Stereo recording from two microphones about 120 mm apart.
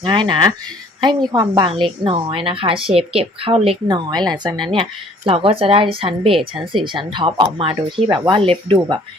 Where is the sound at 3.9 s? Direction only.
35° right (ahead or behind).